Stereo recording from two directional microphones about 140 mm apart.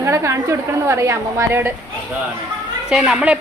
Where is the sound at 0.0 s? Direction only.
20° right (ahead or behind).